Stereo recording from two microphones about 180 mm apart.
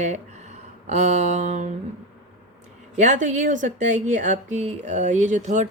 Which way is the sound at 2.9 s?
40° right (ahead or behind).